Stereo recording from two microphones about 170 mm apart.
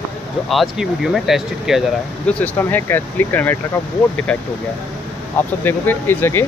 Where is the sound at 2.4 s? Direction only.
10° left (ahead or behind).